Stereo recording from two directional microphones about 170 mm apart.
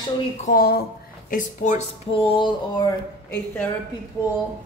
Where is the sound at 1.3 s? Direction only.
45° left (ahead or behind).